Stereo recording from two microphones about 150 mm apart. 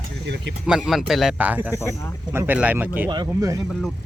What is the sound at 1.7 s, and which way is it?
Speech, 20° left (ahead or behind).